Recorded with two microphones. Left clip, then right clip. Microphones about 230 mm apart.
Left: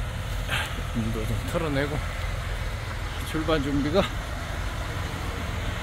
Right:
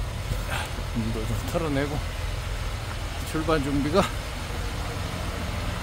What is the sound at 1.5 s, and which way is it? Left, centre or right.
Speech, centre.